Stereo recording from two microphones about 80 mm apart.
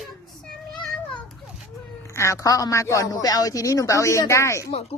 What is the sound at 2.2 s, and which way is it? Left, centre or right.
A man's voice, left.